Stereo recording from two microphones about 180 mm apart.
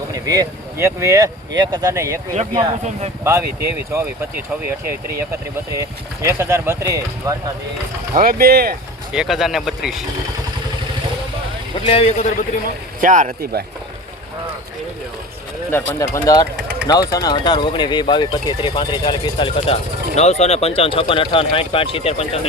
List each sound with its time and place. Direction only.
0.1 s speech: 20° right (ahead or behind)
6.2 s speech: 15° right (ahead or behind)
8.1 s speech: 55° right (ahead or behind)
9.1 s speech: centre (ahead or behind)
11.9 s a man's voice: 30° left (ahead or behind)
13.0 s speech: 45° right (ahead or behind)
16.0 s speech: 15° left (ahead or behind); by 22.4 s 35° left (ahead or behind)